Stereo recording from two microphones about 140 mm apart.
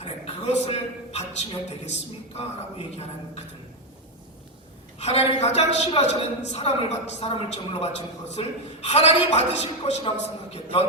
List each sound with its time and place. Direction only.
0.0 s a man's voice: 45° left (ahead or behind)
4.9 s a woman's voice: 50° left (ahead or behind)